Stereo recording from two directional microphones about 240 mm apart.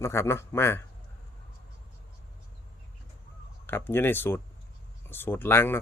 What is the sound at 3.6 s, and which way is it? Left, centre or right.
Speech, centre.